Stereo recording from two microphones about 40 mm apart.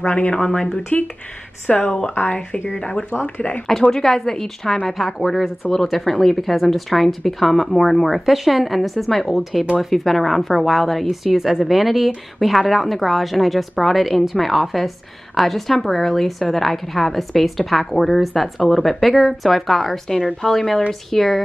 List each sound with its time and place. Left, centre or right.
0.0 s speech: left
2.7 s speech: left
3.3 s speech: left
3.9 s a woman's voice: centre
4.9 s a woman's voice: centre